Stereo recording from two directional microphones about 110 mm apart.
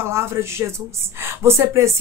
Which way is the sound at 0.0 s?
25° right (ahead or behind).